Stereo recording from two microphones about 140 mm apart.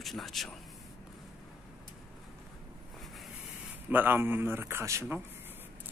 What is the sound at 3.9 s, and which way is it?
Speech, 15° right (ahead or behind).